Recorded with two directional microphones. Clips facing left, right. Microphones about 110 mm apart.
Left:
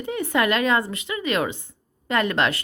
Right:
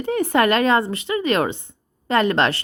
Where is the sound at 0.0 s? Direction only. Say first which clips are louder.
Right 5 dB; 40° right (ahead or behind).